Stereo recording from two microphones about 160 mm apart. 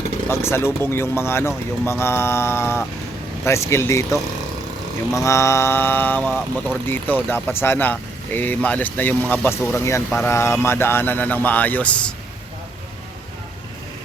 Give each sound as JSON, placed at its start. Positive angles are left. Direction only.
{"t": 0.3, "sound": "speech", "side_deg": 15}